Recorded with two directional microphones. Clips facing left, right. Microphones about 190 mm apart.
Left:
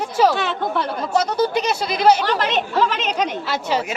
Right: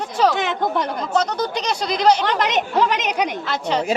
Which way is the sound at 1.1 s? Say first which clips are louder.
Left 3 dB; 10° left (ahead or behind).